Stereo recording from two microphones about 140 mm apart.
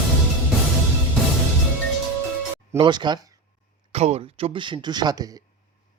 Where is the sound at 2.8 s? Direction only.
35° right (ahead or behind).